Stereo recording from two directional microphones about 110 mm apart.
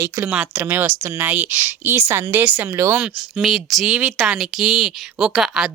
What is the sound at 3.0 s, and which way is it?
Speech, centre (ahead or behind).